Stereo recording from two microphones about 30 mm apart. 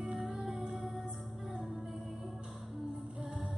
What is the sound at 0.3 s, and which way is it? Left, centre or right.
Music, centre.